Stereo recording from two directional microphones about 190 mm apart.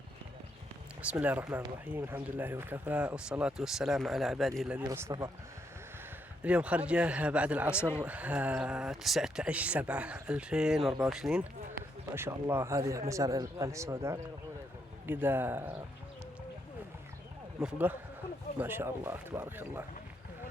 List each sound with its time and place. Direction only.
1.0 s speech: 10° right (ahead or behind)
4.9 s speech: 15° right (ahead or behind)
6.4 s speech: 5° right (ahead or behind)
17.6 s speech: 5° right (ahead or behind)